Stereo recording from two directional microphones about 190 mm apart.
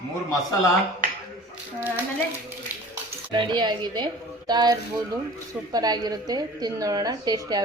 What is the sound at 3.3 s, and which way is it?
A woman's voice, 25° right (ahead or behind).